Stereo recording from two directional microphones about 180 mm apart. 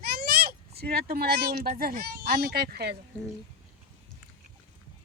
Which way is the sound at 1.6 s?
55° right (ahead or behind).